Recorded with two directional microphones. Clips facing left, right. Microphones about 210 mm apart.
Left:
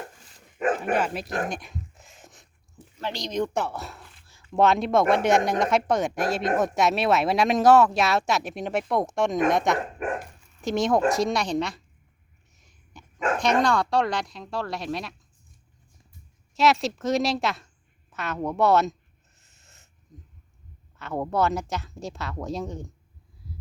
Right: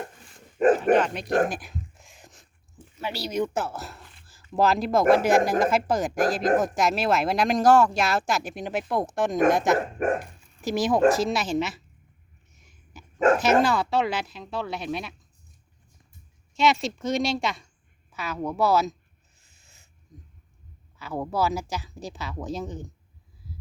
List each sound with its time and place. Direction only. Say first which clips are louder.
0.6 s speech: right 6 dB; 35° right (ahead or behind)
0.9 s speech: right 4 dB; 5° left (ahead or behind)
1.5 s a sound: right 1 dB; centre (ahead or behind)
3.0 s speech: even; 10° right (ahead or behind)
12.5 s a sound: right 1 dB; centre (ahead or behind)
13.4 s speech: right 1 dB; 5° right (ahead or behind)
16.6 s speech: left 1 dB; centre (ahead or behind)
19.4 s owl: left 2 dB; centre (ahead or behind)
21.0 s speech: left 2 dB; centre (ahead or behind)
23.4 s a sound: left 1 dB; centre (ahead or behind)